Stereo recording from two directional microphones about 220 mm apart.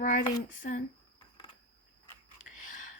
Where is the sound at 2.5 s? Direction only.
35° left (ahead or behind).